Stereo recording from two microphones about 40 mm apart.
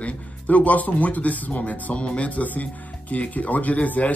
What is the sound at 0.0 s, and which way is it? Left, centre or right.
Speech, left.